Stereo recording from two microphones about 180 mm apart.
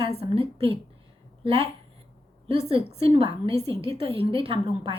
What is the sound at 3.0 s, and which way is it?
Speech, 30° right (ahead or behind).